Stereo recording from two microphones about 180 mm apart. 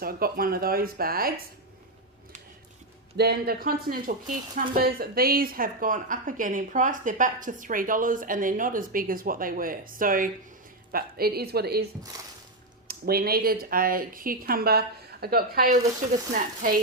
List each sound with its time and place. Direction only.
0.0 s speech: 55° right (ahead or behind)
3.2 s speech: 65° right (ahead or behind)
12.9 s speech: 60° right (ahead or behind)